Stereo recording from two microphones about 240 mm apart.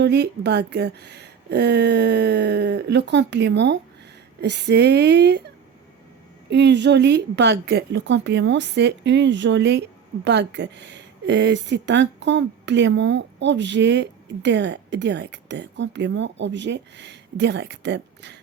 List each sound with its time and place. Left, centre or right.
0.0 s speech: right
6.5 s speech: right